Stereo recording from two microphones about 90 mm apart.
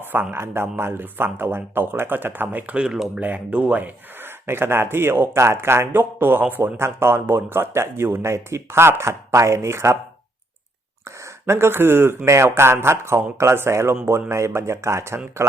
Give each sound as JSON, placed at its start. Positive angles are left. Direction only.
{"t": 0.1, "sound": "speech", "side_deg": -25}
{"t": 3.2, "sound": "speech", "side_deg": -15}
{"t": 4.4, "sound": "speech", "side_deg": -25}
{"t": 11.4, "sound": "speech", "side_deg": -30}